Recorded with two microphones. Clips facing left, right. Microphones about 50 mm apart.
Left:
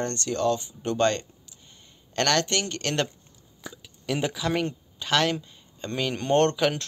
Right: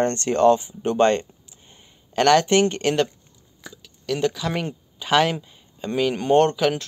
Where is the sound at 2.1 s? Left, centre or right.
Centre.